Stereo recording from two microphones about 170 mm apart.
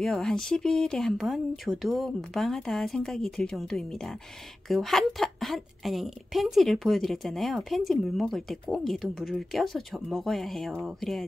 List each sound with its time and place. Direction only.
0.0 s a woman's voice: 5° left (ahead or behind)